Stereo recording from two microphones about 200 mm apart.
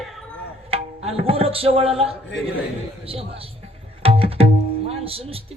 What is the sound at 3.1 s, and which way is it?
Speech, 30° right (ahead or behind).